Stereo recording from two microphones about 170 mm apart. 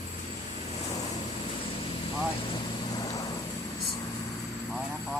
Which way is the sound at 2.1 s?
25° left (ahead or behind).